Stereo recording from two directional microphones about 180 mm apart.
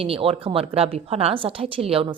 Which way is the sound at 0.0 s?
30° right (ahead or behind).